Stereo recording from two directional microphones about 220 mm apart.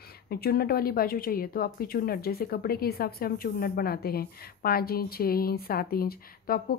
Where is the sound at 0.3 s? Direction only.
45° left (ahead or behind).